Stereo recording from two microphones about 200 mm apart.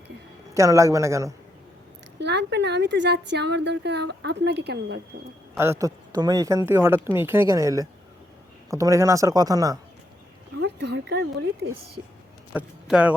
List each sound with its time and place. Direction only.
0.5 s speech: 15° right (ahead or behind)
2.1 s speech: 60° right (ahead or behind)
5.5 s speech: 15° right (ahead or behind)
10.6 s speech: 60° right (ahead or behind)
12.5 s speech: 5° right (ahead or behind)